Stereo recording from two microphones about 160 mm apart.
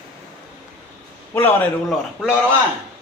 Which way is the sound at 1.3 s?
10° left (ahead or behind).